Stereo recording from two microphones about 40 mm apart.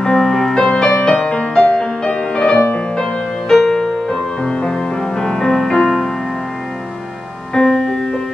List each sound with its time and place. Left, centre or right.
0.0 s music: centre
0.7 s music: left
7.5 s music: centre